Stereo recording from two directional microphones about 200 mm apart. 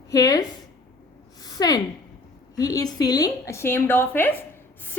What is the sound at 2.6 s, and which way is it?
A woman's voice, 15° left (ahead or behind).